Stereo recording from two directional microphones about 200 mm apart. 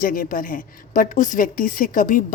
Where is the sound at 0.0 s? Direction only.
45° left (ahead or behind).